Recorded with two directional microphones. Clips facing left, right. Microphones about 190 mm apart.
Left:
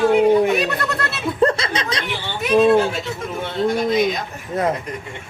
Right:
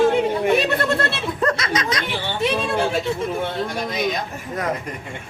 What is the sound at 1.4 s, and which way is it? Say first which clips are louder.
Chuckle: left 4 dB; 30° left (ahead or behind).